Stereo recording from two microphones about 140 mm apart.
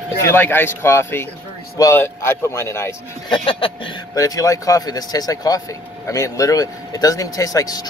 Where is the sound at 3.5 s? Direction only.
40° left (ahead or behind).